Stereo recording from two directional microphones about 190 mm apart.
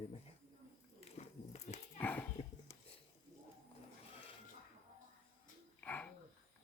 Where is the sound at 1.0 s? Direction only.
35° left (ahead or behind).